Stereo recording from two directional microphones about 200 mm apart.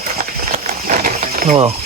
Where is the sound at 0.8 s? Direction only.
40° right (ahead or behind).